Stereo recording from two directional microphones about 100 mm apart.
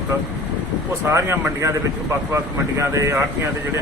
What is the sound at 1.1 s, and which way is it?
Speech, 30° right (ahead or behind).